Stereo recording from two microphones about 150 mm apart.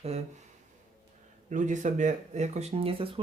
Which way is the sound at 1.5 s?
55° right (ahead or behind).